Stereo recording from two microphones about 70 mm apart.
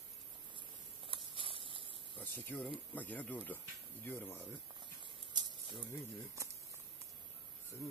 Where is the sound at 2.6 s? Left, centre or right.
Left.